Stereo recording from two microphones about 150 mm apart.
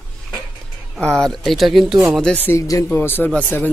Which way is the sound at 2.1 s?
10° left (ahead or behind).